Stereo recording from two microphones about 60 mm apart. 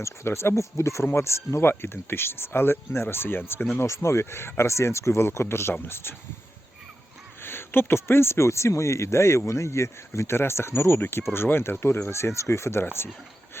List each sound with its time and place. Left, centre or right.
0.0 s speech: left
3.8 s speech: left
7.4 s speech: left